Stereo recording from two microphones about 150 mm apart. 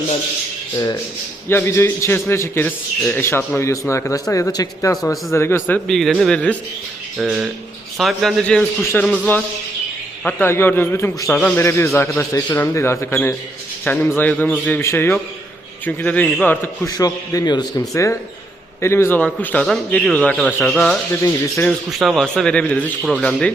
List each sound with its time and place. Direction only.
1.5 s a man's voice: 15° left (ahead or behind)
5.9 s a man's voice: centre (ahead or behind)
10.2 s a man's voice: 10° left (ahead or behind)
16.8 s a man's voice: 25° left (ahead or behind); by 21.0 s 5° left (ahead or behind)
21.1 s speech: 20° left (ahead or behind)
21.7 s a man's voice: centre (ahead or behind)